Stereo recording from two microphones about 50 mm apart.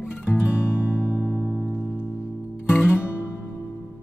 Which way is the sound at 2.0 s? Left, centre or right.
Left.